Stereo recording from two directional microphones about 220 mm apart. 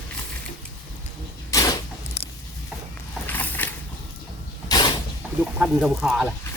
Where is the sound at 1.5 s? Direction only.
15° left (ahead or behind).